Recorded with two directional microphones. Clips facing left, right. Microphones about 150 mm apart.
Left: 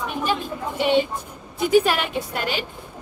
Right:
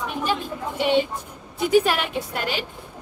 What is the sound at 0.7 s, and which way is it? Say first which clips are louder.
Music: left 1 dB; 10° left (ahead or behind).